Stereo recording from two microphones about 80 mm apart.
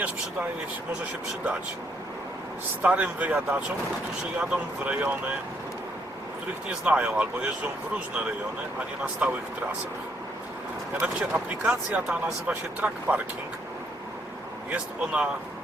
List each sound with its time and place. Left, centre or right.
2.8 s speech: centre
6.7 s speech: centre
9.2 s speech: centre
11.0 s speech: centre
14.7 s speech: centre